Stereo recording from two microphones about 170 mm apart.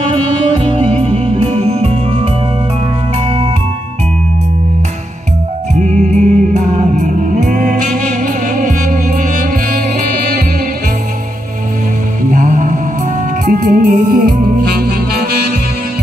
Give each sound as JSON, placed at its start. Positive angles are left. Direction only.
{"t": 0.0, "sound": "music", "side_deg": -35}
{"t": 5.8, "sound": "music", "side_deg": -45}
{"t": 12.3, "sound": "music", "side_deg": -50}